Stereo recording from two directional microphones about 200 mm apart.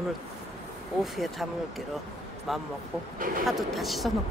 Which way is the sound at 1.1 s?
Centre (ahead or behind).